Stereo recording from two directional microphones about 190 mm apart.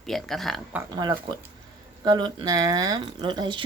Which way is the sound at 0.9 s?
25° right (ahead or behind).